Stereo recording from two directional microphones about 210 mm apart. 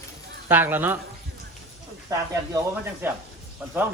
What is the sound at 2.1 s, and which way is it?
Speech, 15° right (ahead or behind).